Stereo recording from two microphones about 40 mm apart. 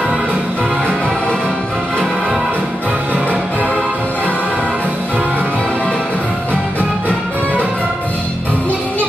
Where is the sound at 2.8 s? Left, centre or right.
Right.